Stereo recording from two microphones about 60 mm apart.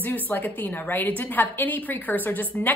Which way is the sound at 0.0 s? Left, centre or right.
Left.